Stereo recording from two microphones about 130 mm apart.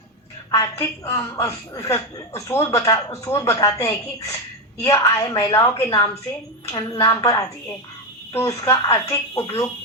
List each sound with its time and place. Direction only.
0.5 s a woman's voice: 25° left (ahead or behind)